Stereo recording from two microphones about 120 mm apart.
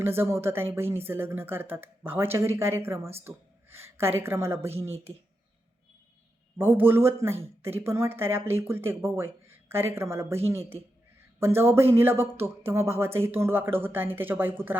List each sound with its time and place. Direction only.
0.0 s a woman's voice: 20° right (ahead or behind)
6.6 s speech: 15° right (ahead or behind)